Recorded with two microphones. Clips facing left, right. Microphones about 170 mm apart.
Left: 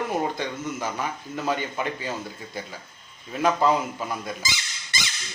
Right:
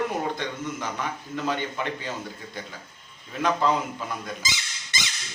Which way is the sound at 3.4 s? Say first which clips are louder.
Left 2 dB; 5° left (ahead or behind).